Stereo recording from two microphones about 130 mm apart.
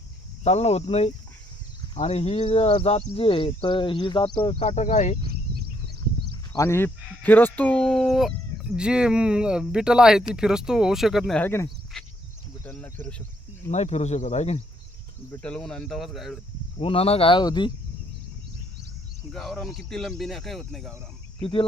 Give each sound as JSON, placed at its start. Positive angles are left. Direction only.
{"t": 0.4, "sound": "speech", "side_deg": 55}
{"t": 4.6, "sound": "speech", "side_deg": 60}
{"t": 6.3, "sound": "a sound", "side_deg": 35}
{"t": 6.7, "sound": "speech", "side_deg": 15}
{"t": 11.3, "sound": "speech", "side_deg": 15}
{"t": 11.9, "sound": "a sound", "side_deg": 5}
{"t": 12.6, "sound": "speech", "side_deg": 15}
{"t": 13.7, "sound": "speech", "side_deg": 60}
{"t": 15.3, "sound": "speech", "side_deg": 10}
{"t": 16.8, "sound": "speech", "side_deg": 50}
{"t": 17.4, "sound": "speech", "side_deg": 30}
{"t": 19.3, "sound": "speech", "side_deg": 5}